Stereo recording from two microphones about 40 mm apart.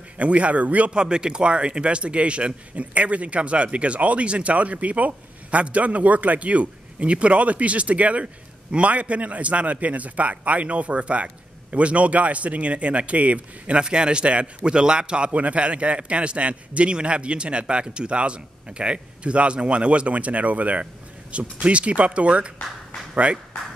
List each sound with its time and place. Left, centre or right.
0.2 s a man's voice: right
0.9 s a man's voice: right